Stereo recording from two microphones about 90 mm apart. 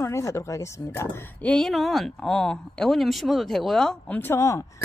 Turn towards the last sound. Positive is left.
turn(degrees=35)  # may be behind; listen again after turning